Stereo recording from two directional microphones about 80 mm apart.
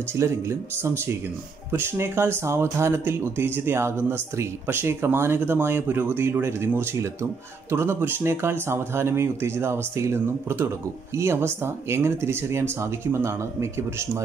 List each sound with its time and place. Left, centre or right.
0.1 s speech: right